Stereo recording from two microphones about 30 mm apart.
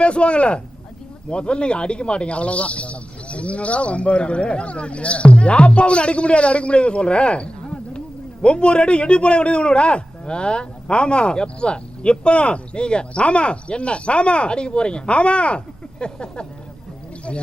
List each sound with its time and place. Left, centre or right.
0.0 s speech: left